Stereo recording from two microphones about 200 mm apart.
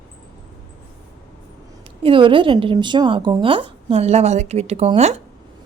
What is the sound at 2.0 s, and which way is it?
A woman's voice, 25° right (ahead or behind).